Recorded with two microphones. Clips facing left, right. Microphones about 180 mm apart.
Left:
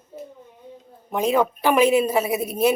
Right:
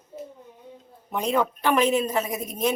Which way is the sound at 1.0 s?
5° left (ahead or behind).